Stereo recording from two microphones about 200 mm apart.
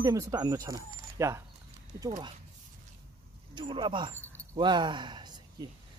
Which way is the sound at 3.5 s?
25° right (ahead or behind).